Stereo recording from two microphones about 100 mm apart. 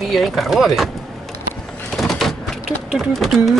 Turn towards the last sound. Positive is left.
turn(degrees=0)  # may be behind; listen again after turning